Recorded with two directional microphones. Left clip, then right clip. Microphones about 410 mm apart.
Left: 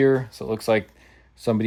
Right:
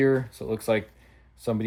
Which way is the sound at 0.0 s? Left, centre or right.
Centre.